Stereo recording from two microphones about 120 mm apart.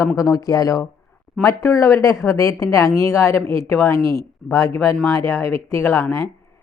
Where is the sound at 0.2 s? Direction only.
30° left (ahead or behind).